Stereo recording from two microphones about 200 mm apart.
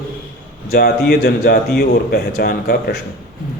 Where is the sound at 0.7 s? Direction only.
50° left (ahead or behind).